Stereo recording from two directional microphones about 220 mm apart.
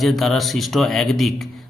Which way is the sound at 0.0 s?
Centre (ahead or behind).